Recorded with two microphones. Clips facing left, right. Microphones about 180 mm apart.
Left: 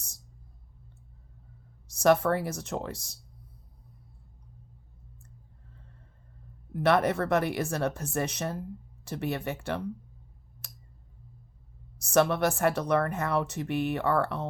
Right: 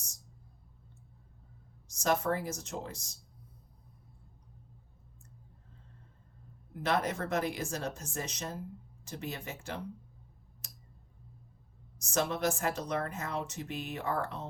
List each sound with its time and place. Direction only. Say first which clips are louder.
2.0 s speech: left 7 dB; 65° left (ahead or behind)
6.8 s speech: left 7 dB; 65° left (ahead or behind)
12.0 s speech: left 7 dB; 65° left (ahead or behind)